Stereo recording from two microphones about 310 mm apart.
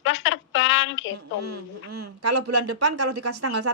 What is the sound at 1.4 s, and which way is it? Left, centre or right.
Speech, right.